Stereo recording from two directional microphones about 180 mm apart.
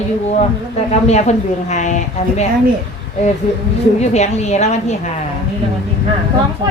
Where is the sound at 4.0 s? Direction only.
40° left (ahead or behind).